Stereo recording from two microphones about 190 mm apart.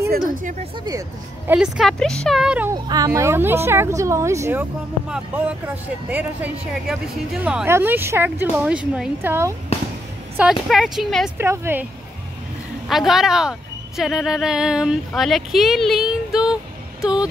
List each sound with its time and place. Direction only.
0.1 s speech: 45° right (ahead or behind)
1.5 s speech: 5° right (ahead or behind)
2.7 s speech: 20° right (ahead or behind)
6.0 s speech: 10° right (ahead or behind)
11.3 s speech: 15° right (ahead or behind)
12.8 s speech: centre (ahead or behind)